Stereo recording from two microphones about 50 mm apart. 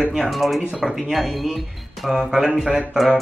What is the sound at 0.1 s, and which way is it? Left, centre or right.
Speech, centre.